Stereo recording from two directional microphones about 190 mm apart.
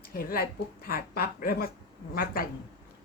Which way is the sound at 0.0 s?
50° left (ahead or behind).